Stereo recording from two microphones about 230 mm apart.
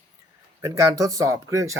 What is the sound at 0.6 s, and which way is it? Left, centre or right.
Speech, centre.